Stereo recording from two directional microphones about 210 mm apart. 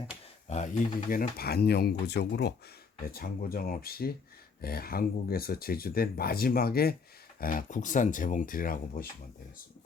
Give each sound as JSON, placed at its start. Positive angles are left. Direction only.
{"t": 0.4, "sound": "speech", "side_deg": 35}